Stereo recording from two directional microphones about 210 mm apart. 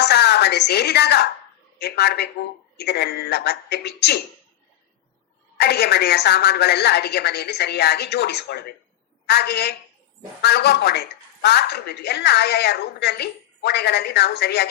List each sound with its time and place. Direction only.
0.0 s a woman's voice: 50° left (ahead or behind)
5.5 s a woman's voice: 50° left (ahead or behind)